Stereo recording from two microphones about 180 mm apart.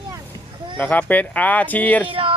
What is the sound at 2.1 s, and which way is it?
Speech, 30° right (ahead or behind).